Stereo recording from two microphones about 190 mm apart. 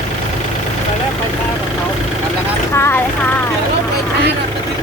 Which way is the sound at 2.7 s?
10° left (ahead or behind).